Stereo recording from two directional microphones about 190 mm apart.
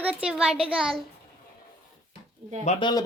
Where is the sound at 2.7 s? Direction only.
25° left (ahead or behind).